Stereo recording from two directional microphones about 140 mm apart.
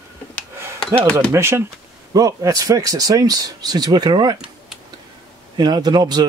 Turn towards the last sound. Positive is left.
turn(degrees=-30)  # may be behind; listen again after turning